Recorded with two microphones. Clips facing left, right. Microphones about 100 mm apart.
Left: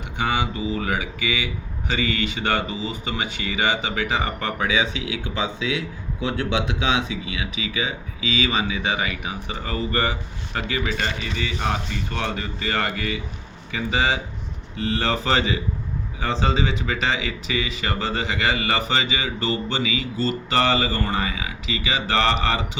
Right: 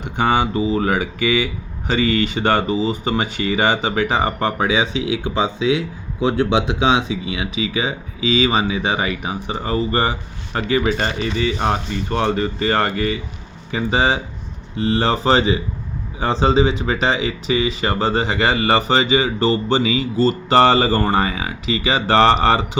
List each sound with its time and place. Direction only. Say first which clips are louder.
0.2 s speech: right 7 dB; 40° right (ahead or behind)